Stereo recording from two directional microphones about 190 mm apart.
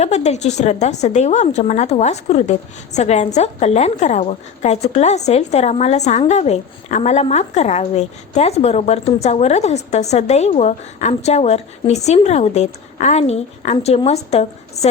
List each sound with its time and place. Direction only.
0.0 s a woman's voice: 35° left (ahead or behind)